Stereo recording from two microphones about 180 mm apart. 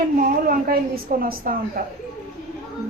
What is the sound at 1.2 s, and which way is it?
Speech, 50° right (ahead or behind).